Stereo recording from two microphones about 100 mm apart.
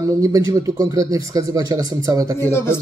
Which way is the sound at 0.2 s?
35° right (ahead or behind).